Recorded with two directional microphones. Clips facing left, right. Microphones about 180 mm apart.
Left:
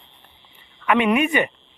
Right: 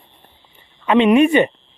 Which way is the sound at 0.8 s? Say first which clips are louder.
Right 6 dB; 25° right (ahead or behind).